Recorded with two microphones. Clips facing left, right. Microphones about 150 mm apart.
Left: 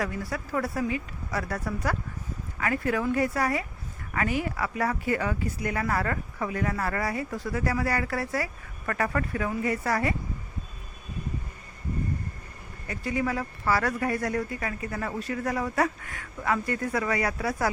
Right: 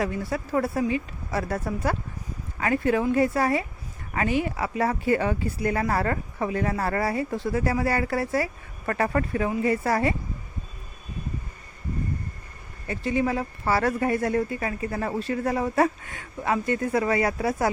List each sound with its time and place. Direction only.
0.0 s speech: 25° right (ahead or behind)
12.9 s speech: 25° right (ahead or behind)